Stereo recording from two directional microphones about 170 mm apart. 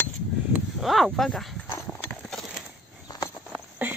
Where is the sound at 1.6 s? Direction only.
15° left (ahead or behind).